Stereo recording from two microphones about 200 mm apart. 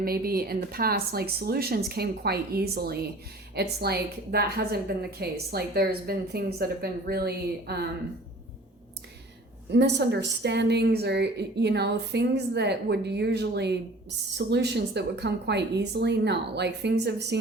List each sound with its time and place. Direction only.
0.0 s a woman's voice: 50° right (ahead or behind)
9.7 s a woman's voice: 60° right (ahead or behind)